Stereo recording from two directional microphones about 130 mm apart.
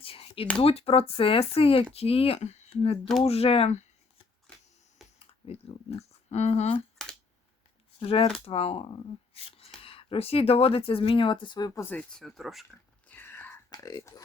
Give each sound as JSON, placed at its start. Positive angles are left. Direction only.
{"t": 0.0, "sound": "a sound", "side_deg": 45}
{"t": 0.6, "sound": "speech", "side_deg": 50}
{"t": 5.0, "sound": "typing", "side_deg": 0}
{"t": 6.0, "sound": "speech", "side_deg": 55}
{"t": 7.9, "sound": "speech", "side_deg": 45}
{"t": 11.7, "sound": "speech", "side_deg": 20}
{"t": 11.9, "sound": "speech", "side_deg": 5}
{"t": 13.1, "sound": "whispering", "side_deg": 15}
{"t": 13.7, "sound": "speech", "side_deg": 30}